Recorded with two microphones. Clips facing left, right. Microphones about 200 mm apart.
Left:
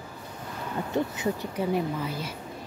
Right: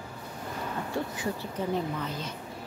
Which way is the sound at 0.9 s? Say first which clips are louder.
Left 6 dB; 20° left (ahead or behind).